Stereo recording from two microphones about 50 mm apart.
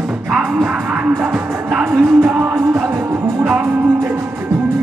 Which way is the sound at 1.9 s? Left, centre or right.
Right.